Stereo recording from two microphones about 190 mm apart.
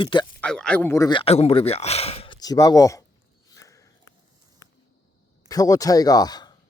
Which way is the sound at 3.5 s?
15° left (ahead or behind).